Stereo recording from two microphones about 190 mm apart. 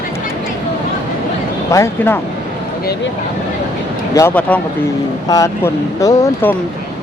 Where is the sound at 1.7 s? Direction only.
15° left (ahead or behind).